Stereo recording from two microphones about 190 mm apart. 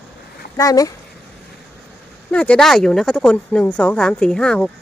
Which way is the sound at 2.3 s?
5° left (ahead or behind).